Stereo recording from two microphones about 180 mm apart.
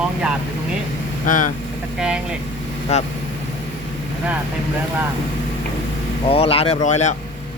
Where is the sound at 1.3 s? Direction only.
45° left (ahead or behind).